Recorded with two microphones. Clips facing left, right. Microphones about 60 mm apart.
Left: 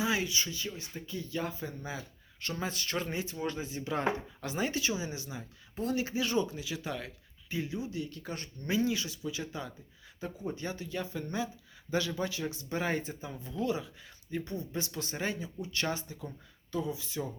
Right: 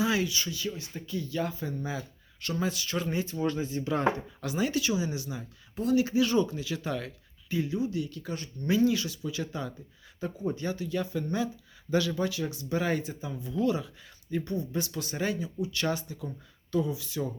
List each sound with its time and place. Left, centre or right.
0.0 s speech: left
2.6 s speech: left
3.1 s speech: left
4.4 s speech: left; by 7.1 s centre
7.5 s speech: left
8.7 s speech: left
13.6 s speech: centre
14.6 s speech: left